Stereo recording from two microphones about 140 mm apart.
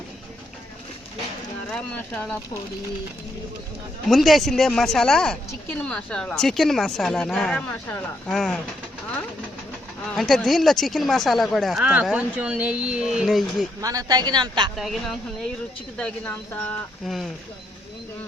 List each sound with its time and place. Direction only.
1.7 s speech: 5° left (ahead or behind)
4.1 s speech: centre (ahead or behind)
10.1 s speech: centre (ahead or behind)
13.8 s speech: 25° right (ahead or behind)
14.8 s speech: centre (ahead or behind)